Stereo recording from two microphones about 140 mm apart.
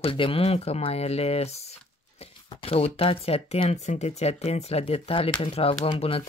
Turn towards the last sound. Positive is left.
turn(degrees=40)  # may be behind; listen again after turning